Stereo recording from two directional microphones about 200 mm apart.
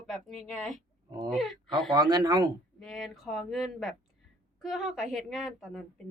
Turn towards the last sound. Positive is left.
turn(degrees=0)  # may be behind; listen again after turning